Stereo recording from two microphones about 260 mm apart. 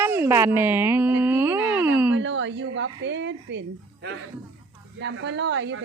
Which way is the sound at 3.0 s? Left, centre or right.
Right.